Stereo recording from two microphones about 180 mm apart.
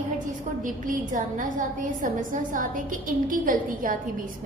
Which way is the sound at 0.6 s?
45° right (ahead or behind).